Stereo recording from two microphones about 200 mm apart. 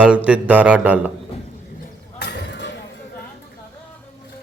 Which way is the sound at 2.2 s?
60° left (ahead or behind).